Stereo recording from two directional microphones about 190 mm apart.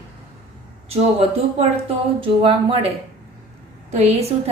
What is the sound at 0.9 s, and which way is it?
A woman's voice, 30° right (ahead or behind).